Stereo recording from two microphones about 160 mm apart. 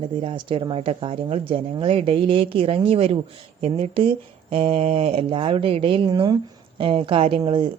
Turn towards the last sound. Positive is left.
turn(degrees=-35)  # may be behind; listen again after turning